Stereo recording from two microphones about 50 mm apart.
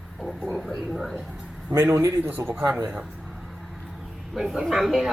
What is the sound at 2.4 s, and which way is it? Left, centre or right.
Speech, right.